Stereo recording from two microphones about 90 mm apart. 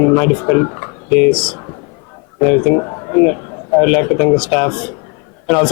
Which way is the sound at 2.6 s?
25° left (ahead or behind).